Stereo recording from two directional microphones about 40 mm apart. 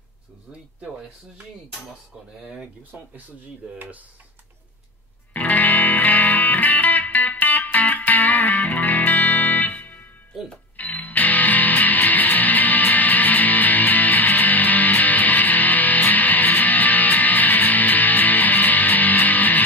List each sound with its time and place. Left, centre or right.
2.9 s speech: right
5.3 s music: left